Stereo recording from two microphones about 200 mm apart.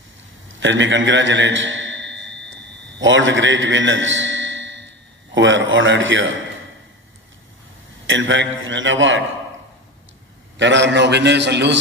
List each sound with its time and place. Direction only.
0.6 s a man's voice: 70° right (ahead or behind)
8.1 s a man's voice: 70° right (ahead or behind)
10.6 s a man's voice: 65° right (ahead or behind)